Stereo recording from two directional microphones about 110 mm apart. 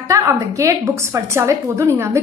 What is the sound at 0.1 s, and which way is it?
A woman's voice, 30° right (ahead or behind).